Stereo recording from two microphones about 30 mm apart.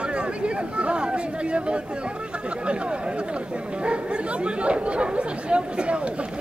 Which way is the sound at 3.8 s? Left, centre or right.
Right.